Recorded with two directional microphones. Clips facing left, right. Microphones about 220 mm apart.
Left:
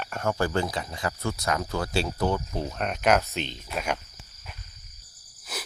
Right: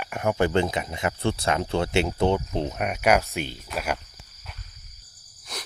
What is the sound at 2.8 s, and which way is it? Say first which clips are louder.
Speech: right 1 dB; 10° right (ahead or behind).